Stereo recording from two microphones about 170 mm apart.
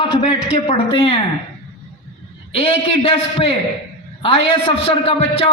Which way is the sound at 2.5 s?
35° left (ahead or behind).